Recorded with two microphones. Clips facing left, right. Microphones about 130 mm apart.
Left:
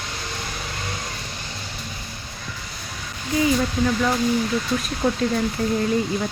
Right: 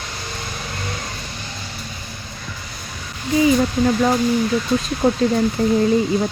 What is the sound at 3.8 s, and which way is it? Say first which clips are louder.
Speech: right 3 dB; 35° right (ahead or behind).